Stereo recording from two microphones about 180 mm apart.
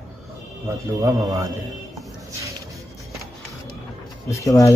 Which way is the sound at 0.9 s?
20° right (ahead or behind).